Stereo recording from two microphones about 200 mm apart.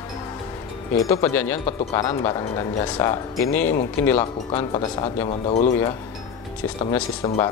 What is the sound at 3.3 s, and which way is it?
Speech, 10° left (ahead or behind).